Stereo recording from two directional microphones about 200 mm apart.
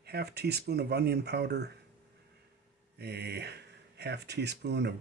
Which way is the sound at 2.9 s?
55° right (ahead or behind).